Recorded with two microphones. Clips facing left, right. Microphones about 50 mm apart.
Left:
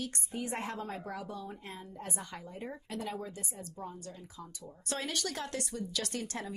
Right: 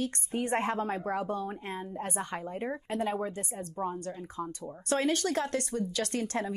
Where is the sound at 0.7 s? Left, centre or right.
Right.